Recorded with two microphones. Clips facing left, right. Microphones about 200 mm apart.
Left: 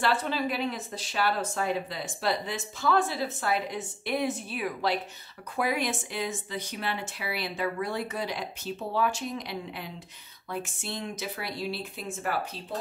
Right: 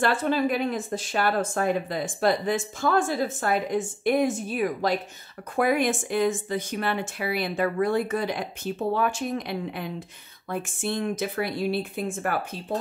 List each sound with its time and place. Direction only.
0.0 s speech: 50° right (ahead or behind)